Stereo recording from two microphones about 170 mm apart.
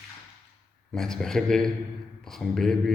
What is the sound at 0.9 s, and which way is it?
A man's voice, 5° left (ahead or behind).